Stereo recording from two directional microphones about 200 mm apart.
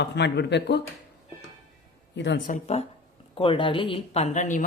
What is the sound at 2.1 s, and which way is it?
Speech, 65° left (ahead or behind).